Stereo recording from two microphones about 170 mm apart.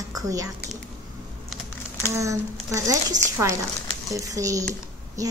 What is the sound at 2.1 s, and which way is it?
Speech, 20° right (ahead or behind).